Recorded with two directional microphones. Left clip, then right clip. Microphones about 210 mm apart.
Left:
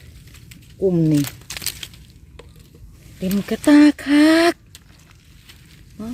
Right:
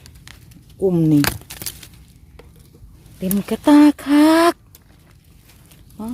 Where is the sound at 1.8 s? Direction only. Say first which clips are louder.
Left 8 dB; centre (ahead or behind).